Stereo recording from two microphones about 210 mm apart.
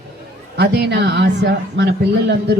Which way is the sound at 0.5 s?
50° right (ahead or behind).